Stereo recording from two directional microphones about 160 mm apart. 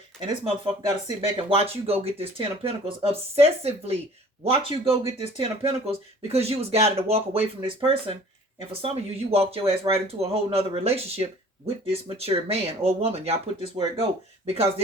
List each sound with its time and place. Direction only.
0.4 s speech: 35° right (ahead or behind)